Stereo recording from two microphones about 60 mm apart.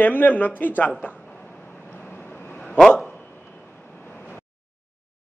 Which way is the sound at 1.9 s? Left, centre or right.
Left.